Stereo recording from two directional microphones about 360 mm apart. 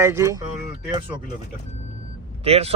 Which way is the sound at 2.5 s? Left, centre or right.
Centre.